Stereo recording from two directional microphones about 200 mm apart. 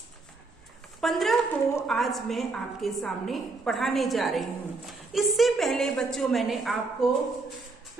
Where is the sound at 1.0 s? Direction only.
Centre (ahead or behind).